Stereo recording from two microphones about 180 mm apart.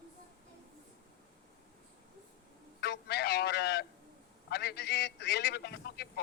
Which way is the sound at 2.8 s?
65° left (ahead or behind).